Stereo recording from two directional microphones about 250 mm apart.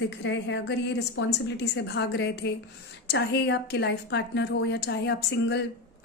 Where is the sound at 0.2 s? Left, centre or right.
Left.